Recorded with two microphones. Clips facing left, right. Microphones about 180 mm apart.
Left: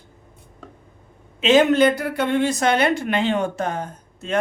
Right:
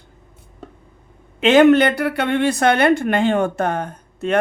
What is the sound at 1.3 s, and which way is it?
A woman's voice, 60° right (ahead or behind).